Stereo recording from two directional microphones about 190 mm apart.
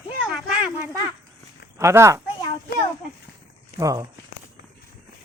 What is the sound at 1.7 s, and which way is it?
Speech, 15° right (ahead or behind).